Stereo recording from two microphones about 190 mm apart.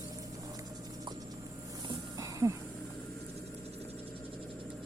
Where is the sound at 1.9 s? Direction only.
15° right (ahead or behind).